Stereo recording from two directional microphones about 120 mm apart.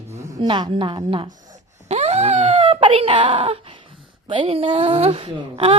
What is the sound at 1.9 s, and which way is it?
Wail, 65° right (ahead or behind).